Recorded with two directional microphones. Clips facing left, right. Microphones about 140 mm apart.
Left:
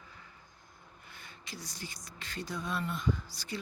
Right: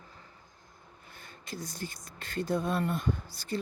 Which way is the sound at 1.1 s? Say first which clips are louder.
Right 5 dB; 45° right (ahead or behind).